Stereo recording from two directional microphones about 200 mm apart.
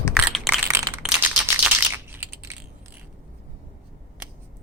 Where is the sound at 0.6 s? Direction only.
10° right (ahead or behind).